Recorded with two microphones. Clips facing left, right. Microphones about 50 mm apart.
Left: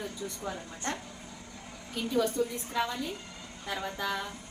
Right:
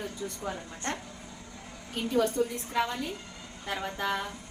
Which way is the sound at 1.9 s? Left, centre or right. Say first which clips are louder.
Right 2 dB; right.